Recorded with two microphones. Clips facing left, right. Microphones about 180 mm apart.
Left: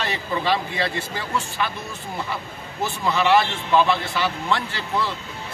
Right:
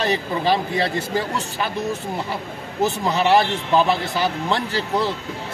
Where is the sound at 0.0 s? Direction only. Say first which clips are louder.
Right 4 dB; 40° right (ahead or behind).